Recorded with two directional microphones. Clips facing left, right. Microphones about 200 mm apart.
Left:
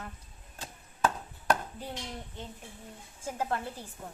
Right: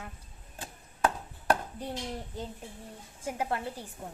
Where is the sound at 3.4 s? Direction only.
10° right (ahead or behind).